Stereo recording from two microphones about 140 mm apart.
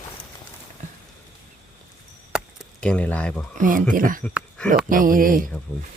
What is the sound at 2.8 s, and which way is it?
Speech, 10° left (ahead or behind).